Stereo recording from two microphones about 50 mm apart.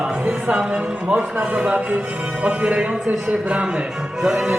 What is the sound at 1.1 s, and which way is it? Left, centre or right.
Speech, right.